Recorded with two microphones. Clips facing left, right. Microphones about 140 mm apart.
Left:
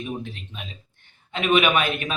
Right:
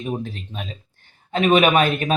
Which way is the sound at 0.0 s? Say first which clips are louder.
Right 4 dB; 40° right (ahead or behind).